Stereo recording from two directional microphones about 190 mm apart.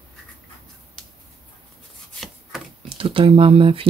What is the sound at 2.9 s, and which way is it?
Speech, 30° right (ahead or behind).